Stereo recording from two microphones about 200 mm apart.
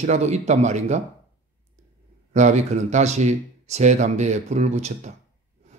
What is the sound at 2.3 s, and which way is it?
A man's voice, 35° right (ahead or behind).